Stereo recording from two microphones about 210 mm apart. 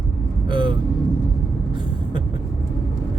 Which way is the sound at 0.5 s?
20° right (ahead or behind).